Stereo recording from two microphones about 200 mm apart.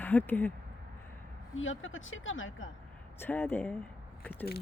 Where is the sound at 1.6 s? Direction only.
75° left (ahead or behind).